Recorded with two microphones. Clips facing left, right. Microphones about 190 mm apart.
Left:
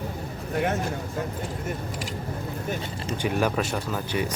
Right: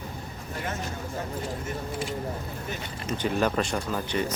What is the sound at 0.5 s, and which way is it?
Speech, 60° left (ahead or behind).